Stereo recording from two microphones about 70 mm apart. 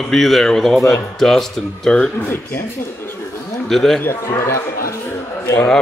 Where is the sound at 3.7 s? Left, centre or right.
Centre.